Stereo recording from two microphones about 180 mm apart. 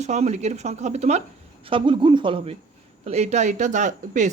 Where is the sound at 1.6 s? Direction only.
30° right (ahead or behind); by 4.3 s 45° right (ahead or behind).